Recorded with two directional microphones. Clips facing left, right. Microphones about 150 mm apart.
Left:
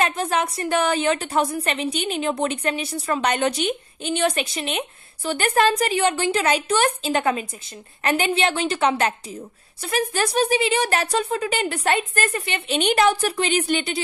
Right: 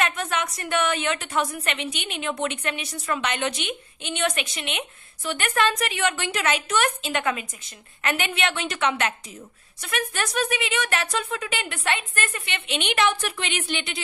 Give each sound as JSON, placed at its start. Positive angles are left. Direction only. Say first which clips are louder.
{"t": 0.0, "sound": "a woman's voice", "louder": "left 4 dB", "side_deg": 35}